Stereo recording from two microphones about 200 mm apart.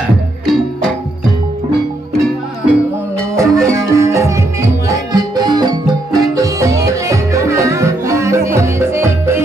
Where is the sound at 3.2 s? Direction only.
15° right (ahead or behind).